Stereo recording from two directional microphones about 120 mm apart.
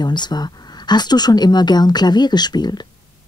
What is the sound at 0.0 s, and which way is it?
Speech, 35° left (ahead or behind).